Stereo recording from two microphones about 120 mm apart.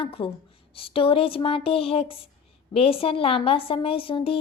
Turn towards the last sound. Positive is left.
turn(degrees=50)  # may be behind; listen again after turning